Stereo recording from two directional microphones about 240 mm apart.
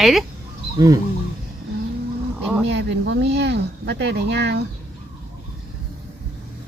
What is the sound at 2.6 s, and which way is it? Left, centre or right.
Speech, right.